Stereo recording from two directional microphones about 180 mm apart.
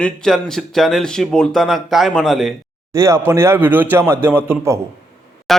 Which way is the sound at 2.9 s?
15° right (ahead or behind).